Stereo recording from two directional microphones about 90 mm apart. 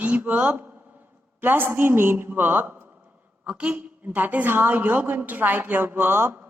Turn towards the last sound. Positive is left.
turn(degrees=-20)  # may be behind; listen again after turning